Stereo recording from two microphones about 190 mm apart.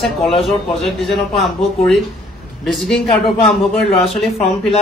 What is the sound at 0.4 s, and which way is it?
Speech, centre (ahead or behind).